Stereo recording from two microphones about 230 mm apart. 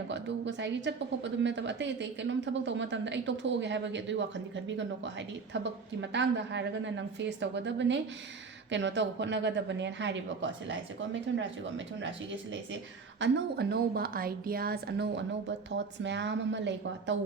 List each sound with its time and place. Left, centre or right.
0.1 s a woman's voice: right
5.6 s a woman's voice: right